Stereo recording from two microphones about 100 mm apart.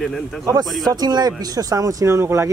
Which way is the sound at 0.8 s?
40° right (ahead or behind).